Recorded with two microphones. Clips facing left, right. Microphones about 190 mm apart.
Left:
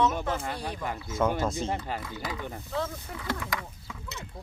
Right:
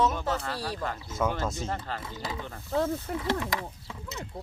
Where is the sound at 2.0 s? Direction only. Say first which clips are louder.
Left 1 dB; 25° right (ahead or behind).